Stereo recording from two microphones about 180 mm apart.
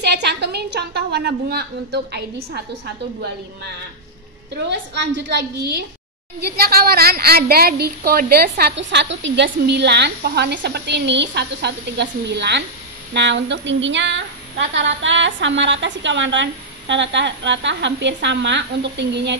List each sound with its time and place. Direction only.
0.0 s a woman's voice: 65° right (ahead or behind)
4.6 s a woman's voice: 75° right (ahead or behind)